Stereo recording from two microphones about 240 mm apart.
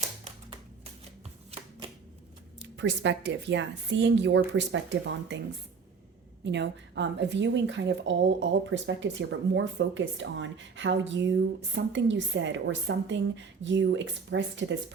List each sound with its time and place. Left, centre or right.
2.6 s a woman's voice: right
6.4 s a woman's voice: right